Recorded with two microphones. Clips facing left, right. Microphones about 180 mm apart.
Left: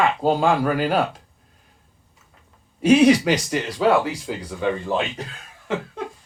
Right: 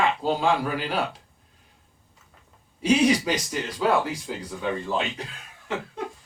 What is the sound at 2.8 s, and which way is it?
Speech, 60° left (ahead or behind).